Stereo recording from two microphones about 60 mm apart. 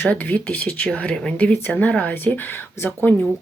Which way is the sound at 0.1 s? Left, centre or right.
Left.